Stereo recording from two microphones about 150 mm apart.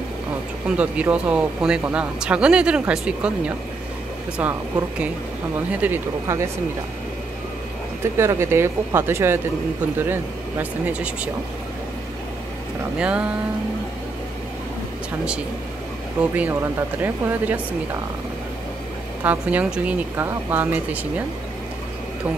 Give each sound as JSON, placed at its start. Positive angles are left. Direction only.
{"t": 0.7, "sound": "speech", "side_deg": -10}
{"t": 8.0, "sound": "speech", "side_deg": -15}
{"t": 12.9, "sound": "speech", "side_deg": -5}
{"t": 16.2, "sound": "speech", "side_deg": -10}
{"t": 19.2, "sound": "speech", "side_deg": -10}